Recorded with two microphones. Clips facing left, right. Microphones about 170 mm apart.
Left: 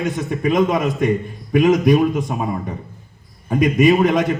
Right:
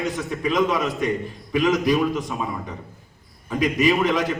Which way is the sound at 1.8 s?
55° left (ahead or behind).